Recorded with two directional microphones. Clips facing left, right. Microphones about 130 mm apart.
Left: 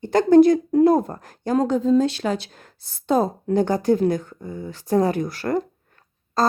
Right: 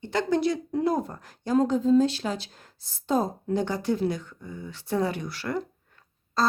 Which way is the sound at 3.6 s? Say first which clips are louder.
Left 9 dB; 45° left (ahead or behind).